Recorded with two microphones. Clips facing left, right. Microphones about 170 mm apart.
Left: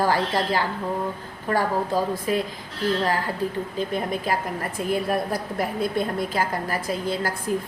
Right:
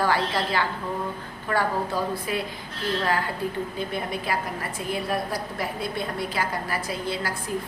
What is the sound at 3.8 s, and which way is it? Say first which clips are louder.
A woman's voice: left 3 dB; 45° left (ahead or behind).